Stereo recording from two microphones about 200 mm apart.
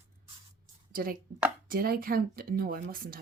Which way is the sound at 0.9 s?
45° right (ahead or behind).